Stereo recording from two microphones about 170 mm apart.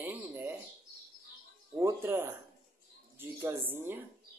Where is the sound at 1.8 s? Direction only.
15° right (ahead or behind).